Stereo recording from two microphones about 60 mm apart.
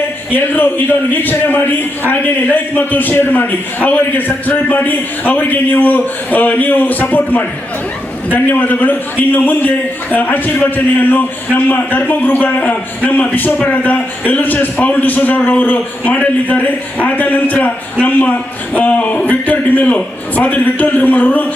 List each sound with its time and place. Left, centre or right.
0.3 s a man's voice: left
18.7 s a man's voice: left